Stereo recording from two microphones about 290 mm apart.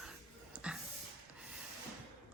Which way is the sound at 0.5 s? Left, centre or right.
Centre.